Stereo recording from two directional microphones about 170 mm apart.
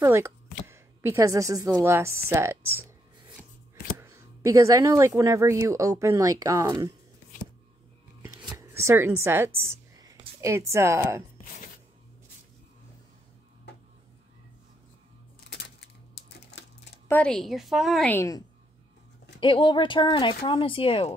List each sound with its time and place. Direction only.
0.0 s a woman's voice: 15° right (ahead or behind)
4.0 s speech: 15° right (ahead or behind)
8.4 s a sound: 20° right (ahead or behind)
10.7 s a woman's voice: 15° right (ahead or behind)
17.1 s a woman's voice: 5° left (ahead or behind)
18.1 s a woman's voice: 20° left (ahead or behind)
19.4 s speech: 30° left (ahead or behind)